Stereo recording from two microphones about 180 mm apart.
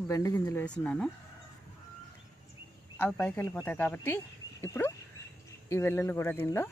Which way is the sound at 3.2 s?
5° left (ahead or behind).